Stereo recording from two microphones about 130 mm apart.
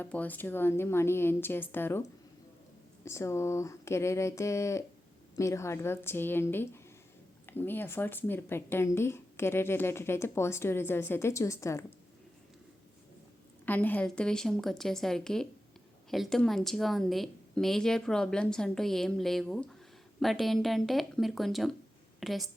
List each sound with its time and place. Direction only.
0.0 s a woman's voice: 15° left (ahead or behind)
13.7 s a woman's voice: 15° left (ahead or behind)